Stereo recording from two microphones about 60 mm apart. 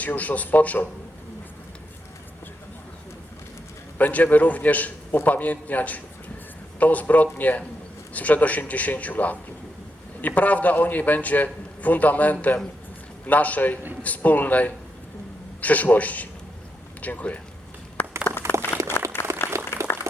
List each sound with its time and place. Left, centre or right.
0.0 s a man's voice: left
3.9 s a man's voice: left
18.0 s a sound: left
18.5 s a sound: right
19.0 s applause: left
19.5 s applause: right